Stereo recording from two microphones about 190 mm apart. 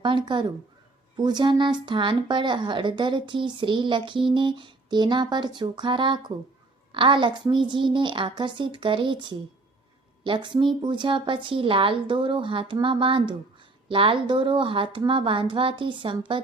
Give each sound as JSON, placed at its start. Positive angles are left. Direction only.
{"t": 0.0, "sound": "speech", "side_deg": -25}